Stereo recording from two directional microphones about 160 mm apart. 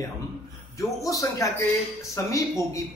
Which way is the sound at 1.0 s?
20° left (ahead or behind).